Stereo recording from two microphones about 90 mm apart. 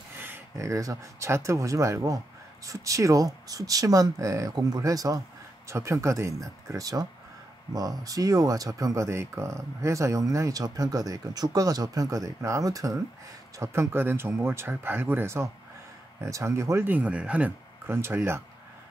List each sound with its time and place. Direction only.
0.6 s speech: 35° right (ahead or behind)
13.6 s speech: 25° right (ahead or behind)
17.8 s speech: 25° right (ahead or behind)